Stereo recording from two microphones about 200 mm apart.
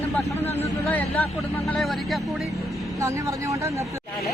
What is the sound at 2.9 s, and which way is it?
Speech, 15° right (ahead or behind).